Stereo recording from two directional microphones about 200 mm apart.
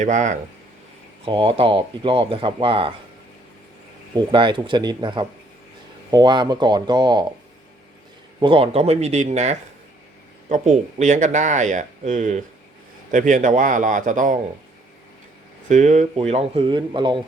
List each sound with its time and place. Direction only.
0.0 s speech: 40° right (ahead or behind)
1.2 s speech: 25° right (ahead or behind)
4.3 s speech: 25° right (ahead or behind)
8.4 s speech: 25° right (ahead or behind)
15.7 s speech: 35° right (ahead or behind)